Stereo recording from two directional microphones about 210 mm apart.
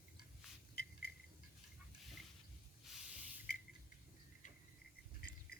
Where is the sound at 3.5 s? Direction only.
45° left (ahead or behind).